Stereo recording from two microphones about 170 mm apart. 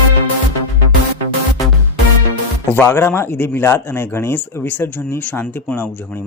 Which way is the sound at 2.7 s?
15° left (ahead or behind).